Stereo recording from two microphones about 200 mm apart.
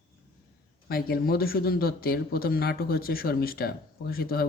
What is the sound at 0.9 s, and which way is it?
A man's voice, 50° left (ahead or behind).